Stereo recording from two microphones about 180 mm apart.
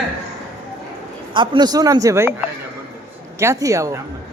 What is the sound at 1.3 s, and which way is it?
A man's voice, 25° right (ahead or behind).